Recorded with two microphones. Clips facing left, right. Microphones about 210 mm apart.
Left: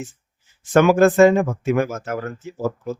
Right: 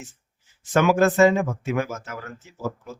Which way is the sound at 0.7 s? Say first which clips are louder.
Left 5 dB; 55° left (ahead or behind).